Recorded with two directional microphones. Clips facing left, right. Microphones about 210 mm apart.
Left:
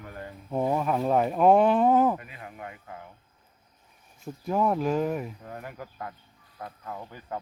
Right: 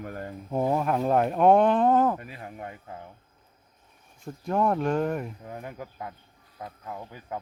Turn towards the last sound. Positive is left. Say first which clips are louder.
# even
turn(degrees=-5)  # may be behind; listen again after turning